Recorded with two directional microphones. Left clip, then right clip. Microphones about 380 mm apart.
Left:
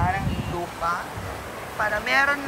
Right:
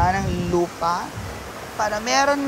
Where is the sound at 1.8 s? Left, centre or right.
Centre.